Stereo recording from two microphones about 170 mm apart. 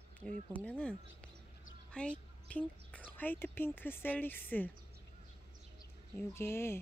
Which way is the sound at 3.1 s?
10° left (ahead or behind).